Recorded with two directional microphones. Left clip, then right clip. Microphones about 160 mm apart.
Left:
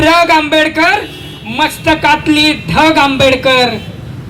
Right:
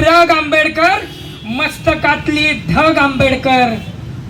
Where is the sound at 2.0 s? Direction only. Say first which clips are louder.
Left 5 dB; 25° left (ahead or behind).